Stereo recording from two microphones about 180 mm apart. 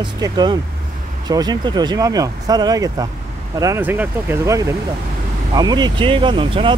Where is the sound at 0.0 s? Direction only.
25° right (ahead or behind).